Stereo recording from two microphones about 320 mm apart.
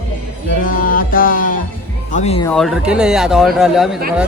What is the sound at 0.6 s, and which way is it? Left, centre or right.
Music, left.